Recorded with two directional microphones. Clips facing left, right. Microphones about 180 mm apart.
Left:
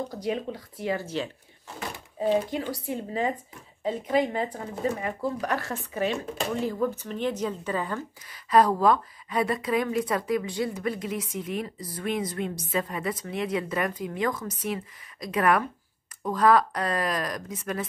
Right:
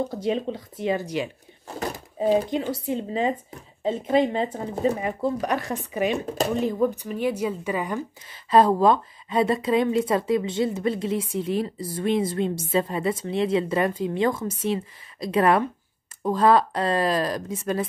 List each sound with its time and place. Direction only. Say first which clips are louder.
0.1 s a woman's voice: right 4 dB; 25° right (ahead or behind)
2.3 s a woman's voice: right 4 dB; 20° right (ahead or behind)
8.3 s a woman's voice: right 3 dB; 25° right (ahead or behind)